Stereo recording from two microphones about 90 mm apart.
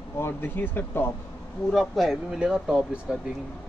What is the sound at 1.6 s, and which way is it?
Speech, centre (ahead or behind).